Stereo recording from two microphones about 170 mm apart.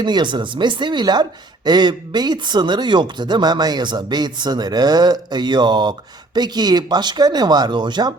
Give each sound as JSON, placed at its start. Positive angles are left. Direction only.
{"t": 0.0, "sound": "speech", "side_deg": -25}